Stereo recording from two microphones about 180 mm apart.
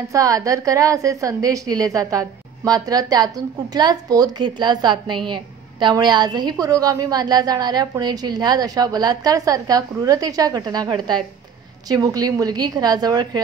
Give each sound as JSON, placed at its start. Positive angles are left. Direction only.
{"t": 0.1, "sound": "a woman's voice", "side_deg": -20}